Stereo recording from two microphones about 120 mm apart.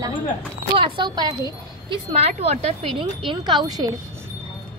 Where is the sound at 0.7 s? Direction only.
45° right (ahead or behind).